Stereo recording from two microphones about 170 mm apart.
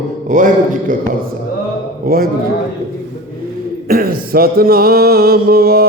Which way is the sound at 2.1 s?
60° right (ahead or behind).